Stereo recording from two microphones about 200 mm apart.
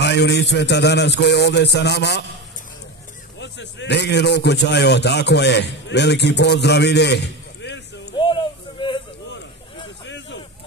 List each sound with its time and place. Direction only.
0.0 s a man's voice: 60° left (ahead or behind)
3.3 s a man's voice: 60° left (ahead or behind)
10.0 s a sound: 60° left (ahead or behind)